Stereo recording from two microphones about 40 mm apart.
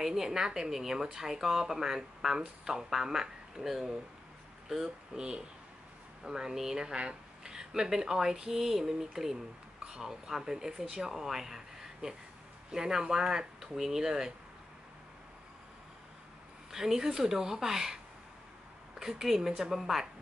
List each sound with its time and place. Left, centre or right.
0.0 s speech: centre
6.2 s speech: centre
6.8 s speech: right
16.7 s speech: centre
18.9 s speech: centre